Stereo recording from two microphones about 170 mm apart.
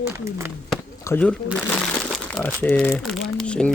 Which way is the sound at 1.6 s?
5° left (ahead or behind).